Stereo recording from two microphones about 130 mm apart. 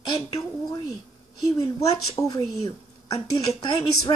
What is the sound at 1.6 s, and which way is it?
Speech, 25° left (ahead or behind).